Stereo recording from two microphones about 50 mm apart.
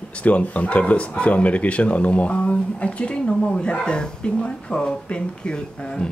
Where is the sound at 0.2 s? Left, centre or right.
Left.